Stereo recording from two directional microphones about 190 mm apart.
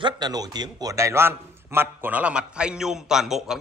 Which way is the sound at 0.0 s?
20° right (ahead or behind).